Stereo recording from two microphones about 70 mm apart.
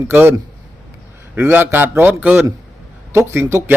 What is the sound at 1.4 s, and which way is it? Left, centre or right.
A man's voice, right.